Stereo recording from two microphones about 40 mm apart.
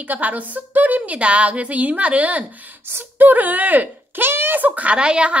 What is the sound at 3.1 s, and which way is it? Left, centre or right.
A woman's voice, right.